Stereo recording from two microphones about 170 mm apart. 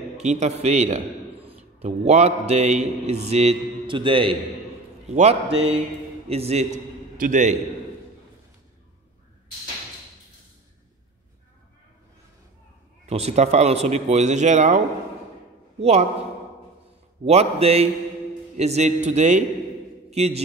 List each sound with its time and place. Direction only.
0.2 s a man's voice: 40° right (ahead or behind)
13.0 s a man's voice: 40° right (ahead or behind)
15.8 s a man's voice: 40° right (ahead or behind)
17.2 s a man's voice: 40° right (ahead or behind)